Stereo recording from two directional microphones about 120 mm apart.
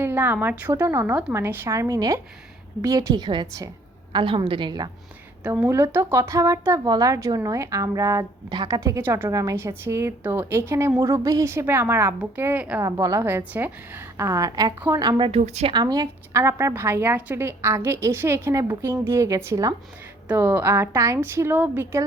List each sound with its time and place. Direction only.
0.0 s a woman's voice: 15° right (ahead or behind); by 4.9 s 40° right (ahead or behind)
5.4 s a woman's voice: 15° right (ahead or behind)
8.4 s a woman's voice: 35° right (ahead or behind)
8.8 s a woman's voice: 20° right (ahead or behind)
9.3 s a woman's voice: 25° right (ahead or behind)
12.8 s a woman's voice: 25° right (ahead or behind)
15.3 s a woman's voice: 65° right (ahead or behind)
15.7 s a woman's voice: 35° right (ahead or behind); by 21.8 s 20° right (ahead or behind)